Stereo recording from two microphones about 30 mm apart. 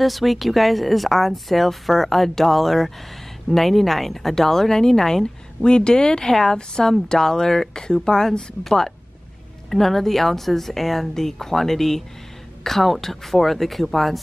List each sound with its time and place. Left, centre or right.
0.0 s speech: centre; by 8.3 s left
9.7 s speech: centre